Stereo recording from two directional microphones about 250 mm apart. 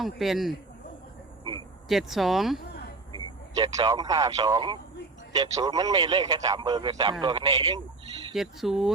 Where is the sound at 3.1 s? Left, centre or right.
Centre.